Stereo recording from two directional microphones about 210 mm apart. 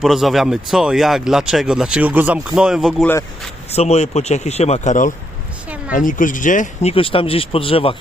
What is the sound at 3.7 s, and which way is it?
Speech, 30° left (ahead or behind).